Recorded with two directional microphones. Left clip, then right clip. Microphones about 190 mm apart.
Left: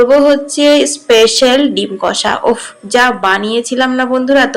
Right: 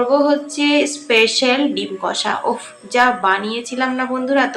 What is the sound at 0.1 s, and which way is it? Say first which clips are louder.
Speech: left 7 dB; 30° left (ahead or behind).